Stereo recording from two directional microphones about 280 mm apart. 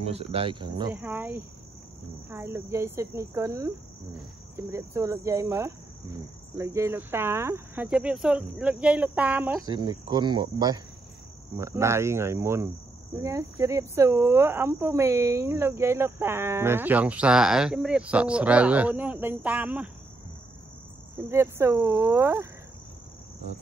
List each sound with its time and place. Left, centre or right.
0.0 s speech: right; by 19.9 s centre
21.3 s speech: centre